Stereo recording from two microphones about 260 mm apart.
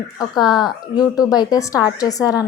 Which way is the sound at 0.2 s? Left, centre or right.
Centre.